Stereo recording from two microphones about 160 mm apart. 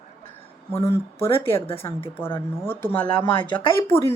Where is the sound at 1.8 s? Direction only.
15° left (ahead or behind).